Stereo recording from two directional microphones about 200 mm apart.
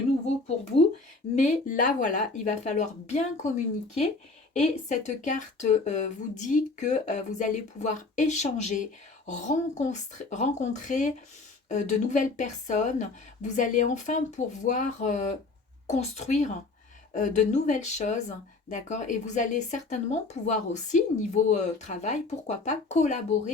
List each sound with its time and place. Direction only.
1.4 s speech: 40° left (ahead or behind)